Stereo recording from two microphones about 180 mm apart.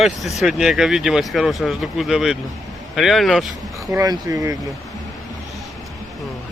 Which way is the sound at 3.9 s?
20° right (ahead or behind).